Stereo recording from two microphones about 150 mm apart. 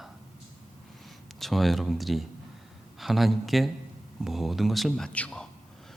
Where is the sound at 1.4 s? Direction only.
Centre (ahead or behind).